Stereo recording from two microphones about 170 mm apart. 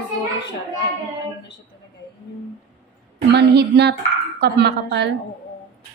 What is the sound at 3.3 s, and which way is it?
Speech, 80° right.